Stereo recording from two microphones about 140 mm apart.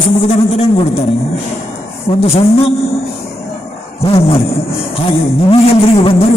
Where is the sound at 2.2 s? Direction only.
45° left (ahead or behind).